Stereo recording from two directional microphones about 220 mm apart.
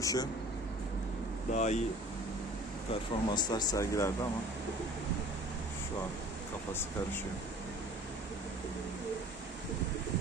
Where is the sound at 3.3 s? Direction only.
15° left (ahead or behind).